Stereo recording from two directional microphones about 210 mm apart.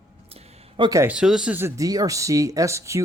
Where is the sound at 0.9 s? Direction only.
10° right (ahead or behind).